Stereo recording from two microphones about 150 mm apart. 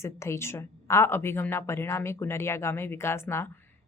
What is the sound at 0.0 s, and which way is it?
Speech, 20° left (ahead or behind).